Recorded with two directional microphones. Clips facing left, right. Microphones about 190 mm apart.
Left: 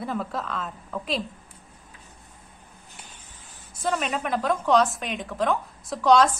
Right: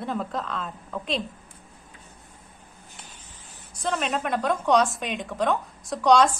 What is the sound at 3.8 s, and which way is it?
A woman's voice, centre (ahead or behind).